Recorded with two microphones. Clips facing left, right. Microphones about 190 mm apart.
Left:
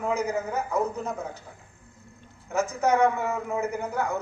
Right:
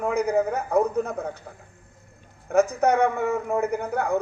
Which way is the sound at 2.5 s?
60° right (ahead or behind).